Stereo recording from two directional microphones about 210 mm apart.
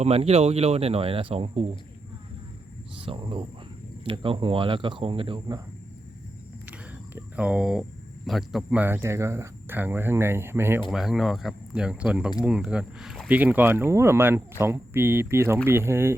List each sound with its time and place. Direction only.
0.0 s speech: 30° right (ahead or behind)
3.1 s speech: 25° right (ahead or behind)
7.2 s speech: 5° right (ahead or behind)